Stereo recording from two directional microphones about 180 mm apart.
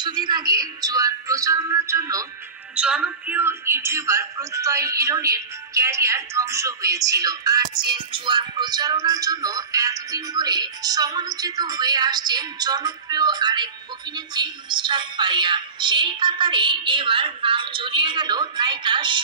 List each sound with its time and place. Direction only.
0.0 s music: 25° right (ahead or behind)
2.7 s music: 5° right (ahead or behind); by 19.2 s 25° right (ahead or behind)